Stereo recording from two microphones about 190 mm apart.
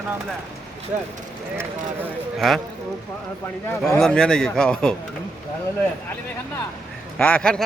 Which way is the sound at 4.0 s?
5° left (ahead or behind).